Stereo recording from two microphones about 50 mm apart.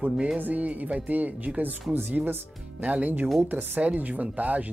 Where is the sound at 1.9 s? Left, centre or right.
Right.